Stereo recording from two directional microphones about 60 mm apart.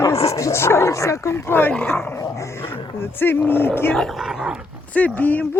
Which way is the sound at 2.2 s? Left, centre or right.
Left.